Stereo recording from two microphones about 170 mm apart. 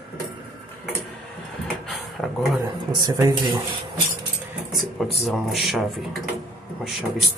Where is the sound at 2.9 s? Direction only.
25° right (ahead or behind).